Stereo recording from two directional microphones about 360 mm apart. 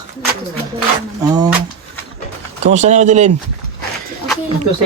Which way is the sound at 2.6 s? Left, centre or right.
Centre.